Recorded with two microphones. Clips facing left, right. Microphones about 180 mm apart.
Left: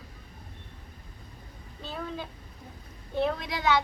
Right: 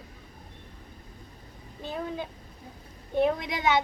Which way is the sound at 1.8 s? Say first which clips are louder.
Right 3 dB; 20° right (ahead or behind).